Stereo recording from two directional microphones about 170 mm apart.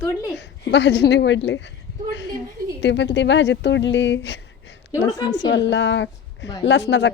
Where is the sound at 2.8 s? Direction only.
90° left.